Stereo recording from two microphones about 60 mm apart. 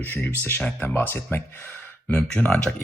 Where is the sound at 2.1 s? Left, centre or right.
Centre.